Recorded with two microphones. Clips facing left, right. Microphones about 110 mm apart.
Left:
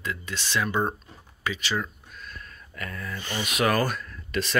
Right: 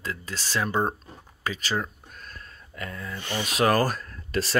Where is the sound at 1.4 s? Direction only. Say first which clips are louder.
Even; 40° right (ahead or behind); by 3.4 s 20° right (ahead or behind).